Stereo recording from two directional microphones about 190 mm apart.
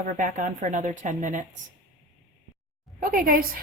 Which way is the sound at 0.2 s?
45° right (ahead or behind).